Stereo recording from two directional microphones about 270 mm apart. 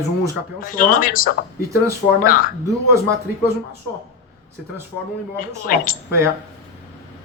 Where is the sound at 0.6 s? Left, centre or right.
Left.